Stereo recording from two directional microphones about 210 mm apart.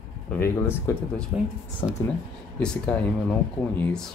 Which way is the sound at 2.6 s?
5° left (ahead or behind).